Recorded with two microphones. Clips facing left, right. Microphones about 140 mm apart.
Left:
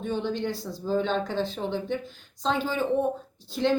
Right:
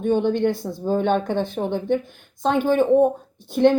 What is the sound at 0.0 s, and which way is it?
A woman's voice, 55° right (ahead or behind).